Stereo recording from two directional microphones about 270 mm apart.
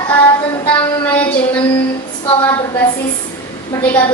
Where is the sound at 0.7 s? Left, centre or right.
Centre.